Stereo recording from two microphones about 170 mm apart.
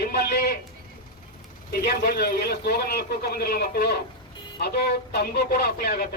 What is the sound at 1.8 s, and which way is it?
A man's voice, 65° left (ahead or behind).